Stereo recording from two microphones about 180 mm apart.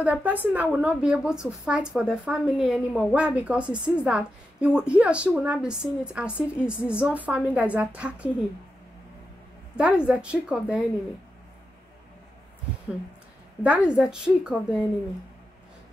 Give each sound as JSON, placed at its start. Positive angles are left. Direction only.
{"t": 0.0, "sound": "a woman's voice", "side_deg": -10}
{"t": 9.8, "sound": "a woman's voice", "side_deg": -5}
{"t": 13.6, "sound": "a woman's voice", "side_deg": -5}